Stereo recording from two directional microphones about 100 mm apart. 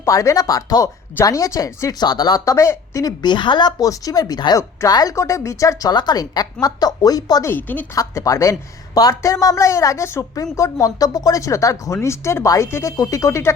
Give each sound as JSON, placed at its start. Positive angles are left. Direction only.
{"t": 0.0, "sound": "a woman's voice", "side_deg": 35}
{"t": 7.4, "sound": "a woman's voice", "side_deg": 20}
{"t": 7.9, "sound": "a woman's voice", "side_deg": 35}